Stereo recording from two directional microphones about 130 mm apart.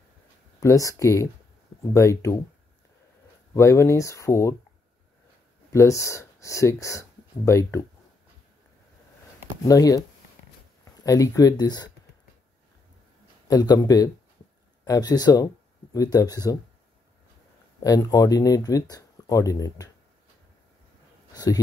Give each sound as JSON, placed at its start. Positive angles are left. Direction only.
{"t": 0.6, "sound": "speech", "side_deg": 25}
{"t": 3.5, "sound": "speech", "side_deg": 20}
{"t": 5.7, "sound": "speech", "side_deg": 25}
{"t": 9.7, "sound": "speech", "side_deg": 25}
{"t": 11.1, "sound": "speech", "side_deg": 25}
{"t": 13.5, "sound": "speech", "side_deg": 30}
{"t": 17.8, "sound": "speech", "side_deg": 25}
{"t": 21.3, "sound": "a sound", "side_deg": 30}